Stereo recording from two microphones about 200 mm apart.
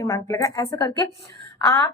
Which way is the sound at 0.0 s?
15° left (ahead or behind).